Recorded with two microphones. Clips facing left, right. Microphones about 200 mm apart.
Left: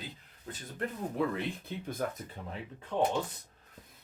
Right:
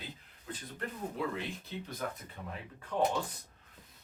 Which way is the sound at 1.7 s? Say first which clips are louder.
Left 2 dB; 55° left (ahead or behind).